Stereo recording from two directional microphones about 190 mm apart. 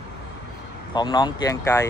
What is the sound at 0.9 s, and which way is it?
Speech, 20° left (ahead or behind).